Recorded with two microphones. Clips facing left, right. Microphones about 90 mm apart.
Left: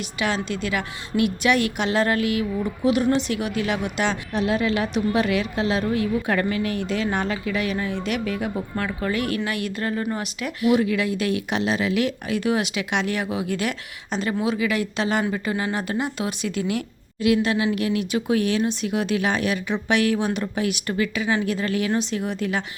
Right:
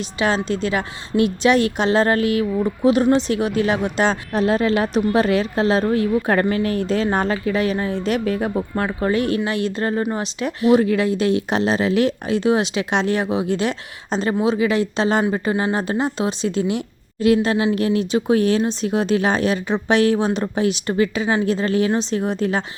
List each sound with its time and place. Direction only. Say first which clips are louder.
0.2 s a woman's voice: right 5 dB; 35° right (ahead or behind)